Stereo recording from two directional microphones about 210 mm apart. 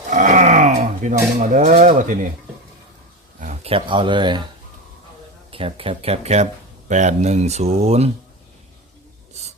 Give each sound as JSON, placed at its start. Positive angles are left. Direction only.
{"t": 0.1, "sound": "cutlery", "side_deg": -35}
{"t": 3.4, "sound": "speech", "side_deg": -30}
{"t": 5.5, "sound": "speech", "side_deg": -25}
{"t": 9.3, "sound": "writing", "side_deg": -30}